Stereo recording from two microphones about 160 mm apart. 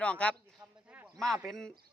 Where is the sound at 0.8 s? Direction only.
10° right (ahead or behind).